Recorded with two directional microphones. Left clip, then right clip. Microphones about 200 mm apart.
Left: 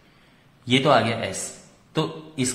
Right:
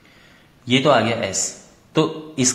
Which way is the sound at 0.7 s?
10° right (ahead or behind).